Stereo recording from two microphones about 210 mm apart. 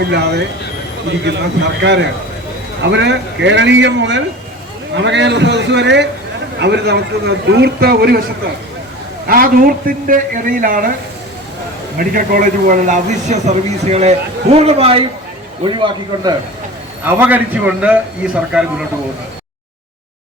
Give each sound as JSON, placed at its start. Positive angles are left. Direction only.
{"t": 0.1, "sound": "a man's voice", "side_deg": -50}
{"t": 9.2, "sound": "a man's voice", "side_deg": -45}
{"t": 11.9, "sound": "a man's voice", "side_deg": -40}
{"t": 17.1, "sound": "a man's voice", "side_deg": -10}